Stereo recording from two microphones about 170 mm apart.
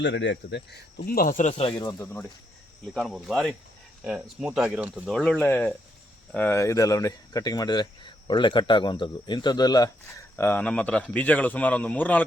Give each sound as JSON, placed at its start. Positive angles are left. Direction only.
{"t": 0.0, "sound": "speech", "side_deg": 90}
{"t": 1.8, "sound": "speech", "side_deg": 20}
{"t": 2.9, "sound": "speech", "side_deg": 0}
{"t": 5.1, "sound": "speech", "side_deg": 5}
{"t": 10.3, "sound": "speech", "side_deg": 10}